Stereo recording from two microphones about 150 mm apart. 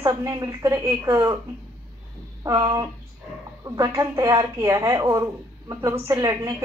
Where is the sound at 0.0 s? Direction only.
20° right (ahead or behind).